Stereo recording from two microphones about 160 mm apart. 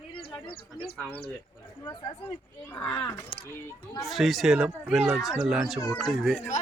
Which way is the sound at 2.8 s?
15° left (ahead or behind).